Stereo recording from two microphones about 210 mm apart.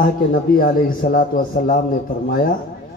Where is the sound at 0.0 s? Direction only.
40° left (ahead or behind).